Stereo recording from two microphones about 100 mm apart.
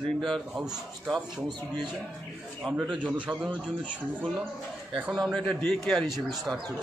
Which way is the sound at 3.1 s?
10° right (ahead or behind).